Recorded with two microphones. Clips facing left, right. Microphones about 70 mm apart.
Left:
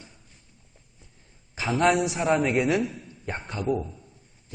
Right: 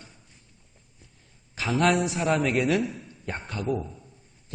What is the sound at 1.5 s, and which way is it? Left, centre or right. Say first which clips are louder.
A man's voice: left 1 dB; centre.